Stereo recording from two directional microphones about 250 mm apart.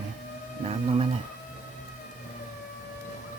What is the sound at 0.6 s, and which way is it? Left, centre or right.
Speech, right.